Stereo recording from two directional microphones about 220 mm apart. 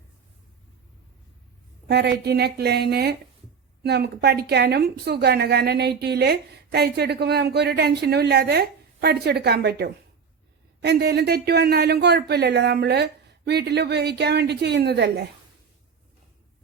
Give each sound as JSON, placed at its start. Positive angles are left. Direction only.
{"t": 1.9, "sound": "a woman's voice", "side_deg": -50}